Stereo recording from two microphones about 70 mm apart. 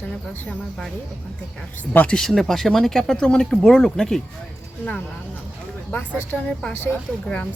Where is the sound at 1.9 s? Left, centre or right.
Left.